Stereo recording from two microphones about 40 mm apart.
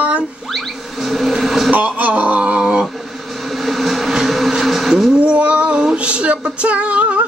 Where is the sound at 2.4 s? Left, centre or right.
Right.